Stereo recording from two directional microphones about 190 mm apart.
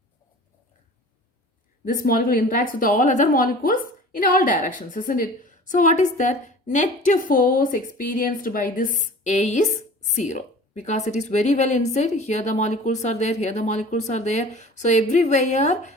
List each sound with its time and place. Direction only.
1.9 s a woman's voice: 50° left (ahead or behind)